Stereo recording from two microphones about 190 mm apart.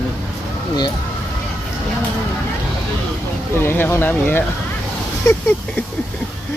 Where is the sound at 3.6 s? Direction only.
10° left (ahead or behind).